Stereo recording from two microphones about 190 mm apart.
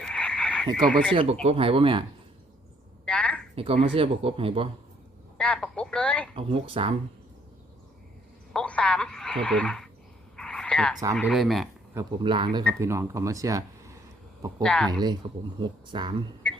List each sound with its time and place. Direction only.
0.0 s frog: 5° left (ahead or behind)
1.1 s speech: 30° right (ahead or behind)
3.1 s a sound: 5° left (ahead or behind)
3.5 s speech: 30° right (ahead or behind)
5.4 s speech: 5° left (ahead or behind)
6.3 s speech: 30° right (ahead or behind)
8.5 s speech: 5° left (ahead or behind)
10.3 s frog: 5° left (ahead or behind)
11.1 s speech: centre (ahead or behind)
12.2 s speech: 25° right (ahead or behind)
12.8 s speech: 15° right (ahead or behind)
14.6 s speech: 5° left (ahead or behind)
15.0 s speech: 25° right (ahead or behind)
16.4 s beatboxing: 5° left (ahead or behind)